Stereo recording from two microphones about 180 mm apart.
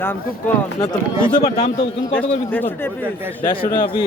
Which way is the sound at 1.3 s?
35° left (ahead or behind).